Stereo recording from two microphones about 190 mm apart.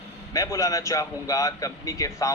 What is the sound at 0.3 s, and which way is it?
A man's voice, 15° left (ahead or behind).